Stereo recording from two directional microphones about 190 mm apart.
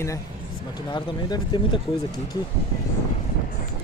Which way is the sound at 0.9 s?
25° left (ahead or behind).